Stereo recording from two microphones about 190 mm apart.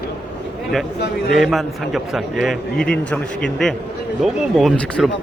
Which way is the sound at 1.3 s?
Centre (ahead or behind).